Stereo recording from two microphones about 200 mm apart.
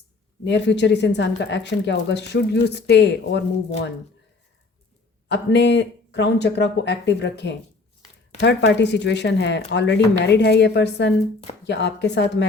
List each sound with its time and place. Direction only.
0.4 s speech: 60° left (ahead or behind)
5.3 s speech: 60° left (ahead or behind)